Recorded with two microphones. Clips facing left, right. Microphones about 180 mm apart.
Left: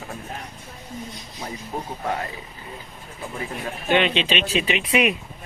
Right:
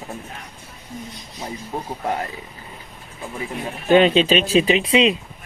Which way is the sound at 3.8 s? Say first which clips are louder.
Right 7 dB; 35° right (ahead or behind).